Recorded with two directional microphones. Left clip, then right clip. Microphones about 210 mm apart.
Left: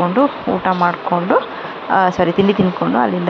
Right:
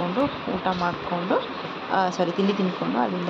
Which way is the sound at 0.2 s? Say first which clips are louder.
Left 9 dB; 30° left (ahead or behind).